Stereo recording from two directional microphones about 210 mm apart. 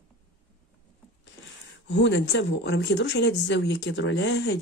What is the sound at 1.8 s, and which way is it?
Speech, 60° left (ahead or behind).